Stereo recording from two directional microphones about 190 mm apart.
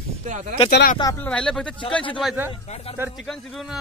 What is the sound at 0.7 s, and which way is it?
Speech, 60° left (ahead or behind).